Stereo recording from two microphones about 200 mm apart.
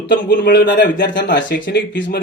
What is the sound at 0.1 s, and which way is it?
Speech, 60° left (ahead or behind).